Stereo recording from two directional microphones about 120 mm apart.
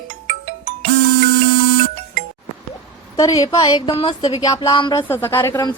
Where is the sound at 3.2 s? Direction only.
30° left (ahead or behind).